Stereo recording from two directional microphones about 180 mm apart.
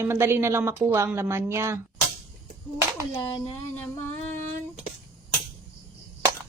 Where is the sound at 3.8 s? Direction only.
10° left (ahead or behind).